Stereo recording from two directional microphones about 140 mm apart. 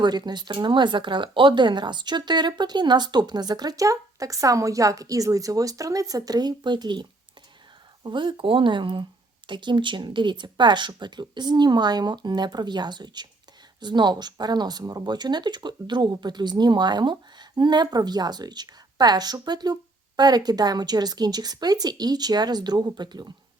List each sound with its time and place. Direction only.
0.0 s speech: 30° right (ahead or behind)